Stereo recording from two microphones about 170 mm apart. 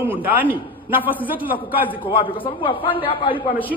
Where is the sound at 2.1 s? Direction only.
30° left (ahead or behind).